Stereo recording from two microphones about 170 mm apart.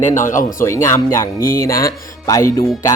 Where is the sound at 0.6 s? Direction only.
15° left (ahead or behind).